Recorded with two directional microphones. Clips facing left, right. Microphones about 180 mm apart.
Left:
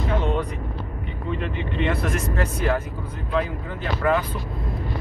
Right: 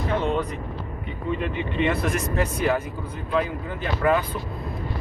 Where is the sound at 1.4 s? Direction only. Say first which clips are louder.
Right 1 dB; 15° right (ahead or behind).